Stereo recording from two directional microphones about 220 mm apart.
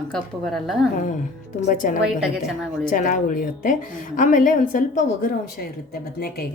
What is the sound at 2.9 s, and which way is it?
A woman's voice, 35° left (ahead or behind).